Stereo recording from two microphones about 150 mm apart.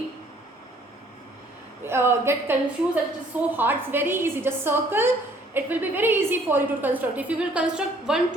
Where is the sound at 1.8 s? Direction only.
15° right (ahead or behind).